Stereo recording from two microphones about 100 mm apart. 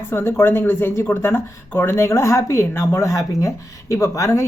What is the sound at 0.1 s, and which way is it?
Speech, 25° left (ahead or behind).